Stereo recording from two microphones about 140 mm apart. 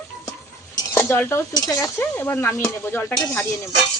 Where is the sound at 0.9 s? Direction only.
15° left (ahead or behind).